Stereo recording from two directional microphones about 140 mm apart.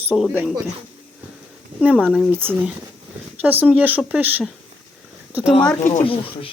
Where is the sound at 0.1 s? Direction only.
5° right (ahead or behind).